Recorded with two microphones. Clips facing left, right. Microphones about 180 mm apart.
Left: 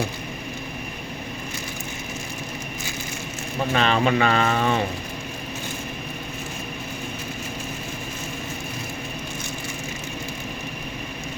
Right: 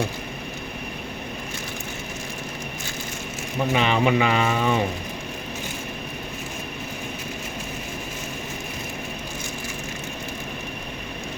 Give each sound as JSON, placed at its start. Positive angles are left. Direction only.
{"t": 3.7, "sound": "speech", "side_deg": -15}